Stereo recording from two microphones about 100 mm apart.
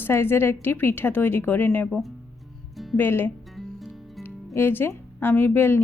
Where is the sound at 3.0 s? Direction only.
20° left (ahead or behind).